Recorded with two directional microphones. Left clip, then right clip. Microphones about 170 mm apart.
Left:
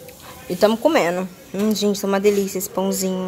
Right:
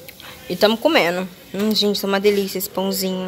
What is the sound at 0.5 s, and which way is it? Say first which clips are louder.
Speech: even; 5° left (ahead or behind).